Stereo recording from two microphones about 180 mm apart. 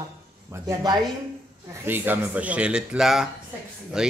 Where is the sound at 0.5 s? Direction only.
15° right (ahead or behind).